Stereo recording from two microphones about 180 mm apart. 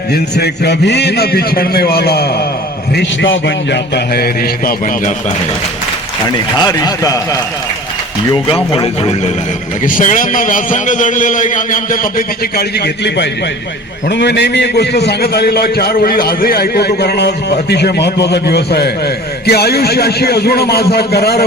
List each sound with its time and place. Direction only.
0.1 s a man's voice: 65° left (ahead or behind)
2.9 s a man's voice: 80° left; by 5.1 s 50° left (ahead or behind)
6.2 s a man's voice: 20° left (ahead or behind)
8.5 s a man's voice: 25° left (ahead or behind)
9.8 s a man's voice: 45° left (ahead or behind)